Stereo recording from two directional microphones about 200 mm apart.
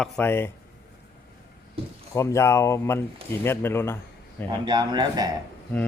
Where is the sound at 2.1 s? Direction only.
15° left (ahead or behind).